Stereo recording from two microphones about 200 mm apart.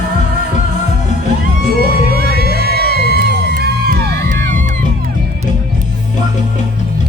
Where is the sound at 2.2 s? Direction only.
50° right (ahead or behind).